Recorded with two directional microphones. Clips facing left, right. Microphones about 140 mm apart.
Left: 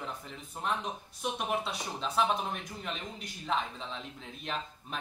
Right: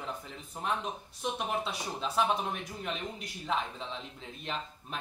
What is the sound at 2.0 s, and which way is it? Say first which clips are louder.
Speech: even; centre (ahead or behind).